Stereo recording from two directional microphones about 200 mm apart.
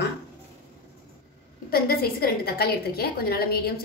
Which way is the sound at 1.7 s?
50° left (ahead or behind).